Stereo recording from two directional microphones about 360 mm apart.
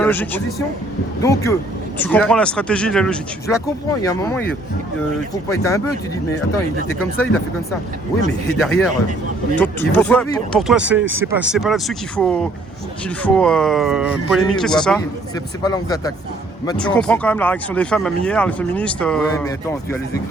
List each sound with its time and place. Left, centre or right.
0.0 s speech: centre
5.6 s speech: centre
8.3 s speech: centre
11.0 s speech: right
11.3 s speech: centre